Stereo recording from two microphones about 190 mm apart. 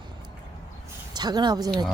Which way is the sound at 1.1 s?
20° right (ahead or behind).